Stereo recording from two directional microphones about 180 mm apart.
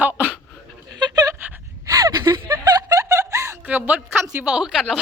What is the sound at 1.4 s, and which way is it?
Gasp, 20° right (ahead or behind).